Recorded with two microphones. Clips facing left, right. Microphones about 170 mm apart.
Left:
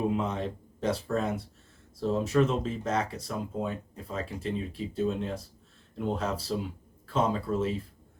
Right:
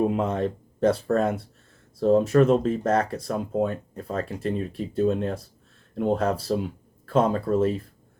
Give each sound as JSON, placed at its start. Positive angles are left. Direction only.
{"t": 0.1, "sound": "speech", "side_deg": -50}